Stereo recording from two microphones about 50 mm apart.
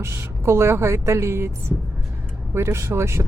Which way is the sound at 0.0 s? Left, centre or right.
Right.